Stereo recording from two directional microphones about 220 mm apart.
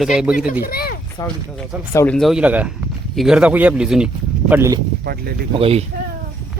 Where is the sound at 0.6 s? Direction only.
45° left (ahead or behind).